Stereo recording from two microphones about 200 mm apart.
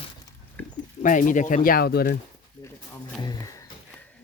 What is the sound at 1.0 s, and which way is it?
Speech, 40° left (ahead or behind).